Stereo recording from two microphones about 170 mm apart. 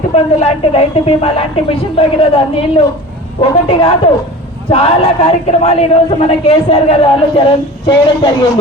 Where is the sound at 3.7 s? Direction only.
35° left (ahead or behind).